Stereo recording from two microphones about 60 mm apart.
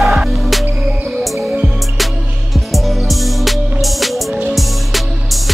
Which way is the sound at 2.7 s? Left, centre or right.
Centre.